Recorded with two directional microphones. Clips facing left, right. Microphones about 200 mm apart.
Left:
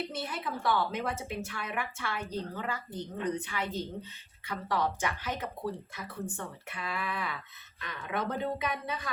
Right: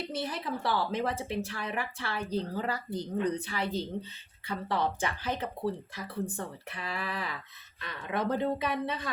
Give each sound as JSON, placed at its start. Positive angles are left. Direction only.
{"t": 0.1, "sound": "a woman's voice", "side_deg": -35}